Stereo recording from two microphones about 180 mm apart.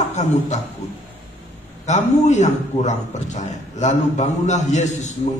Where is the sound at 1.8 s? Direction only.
40° left (ahead or behind).